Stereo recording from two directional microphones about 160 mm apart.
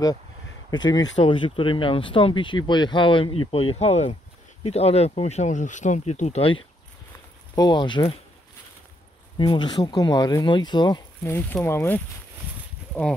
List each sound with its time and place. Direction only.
0.7 s speech: 25° left (ahead or behind)
1.1 s speech: 35° left (ahead or behind)
7.5 s speech: 25° left (ahead or behind)
9.4 s speech: 25° left (ahead or behind)
11.2 s speech: 15° left (ahead or behind)